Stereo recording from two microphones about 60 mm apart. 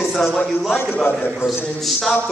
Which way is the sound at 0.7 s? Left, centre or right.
Left.